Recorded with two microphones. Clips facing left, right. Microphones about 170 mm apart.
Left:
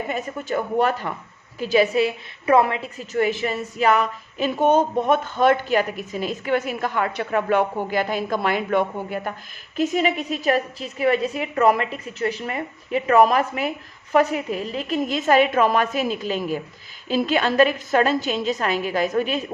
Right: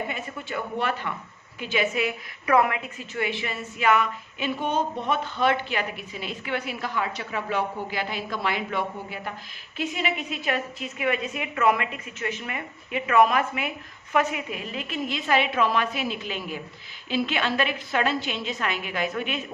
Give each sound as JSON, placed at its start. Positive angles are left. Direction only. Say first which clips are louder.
{"t": 0.1, "sound": "a woman's voice", "louder": "left 7 dB", "side_deg": 40}